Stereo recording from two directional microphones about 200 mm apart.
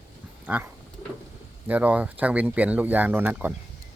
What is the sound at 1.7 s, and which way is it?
Speech, 5° right (ahead or behind).